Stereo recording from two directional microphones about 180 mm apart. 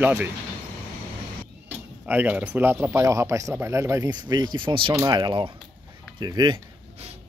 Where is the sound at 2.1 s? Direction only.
10° right (ahead or behind).